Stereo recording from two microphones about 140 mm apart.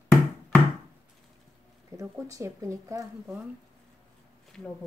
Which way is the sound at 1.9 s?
20° right (ahead or behind).